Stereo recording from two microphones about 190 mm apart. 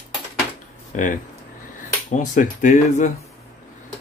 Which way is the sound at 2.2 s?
40° left (ahead or behind).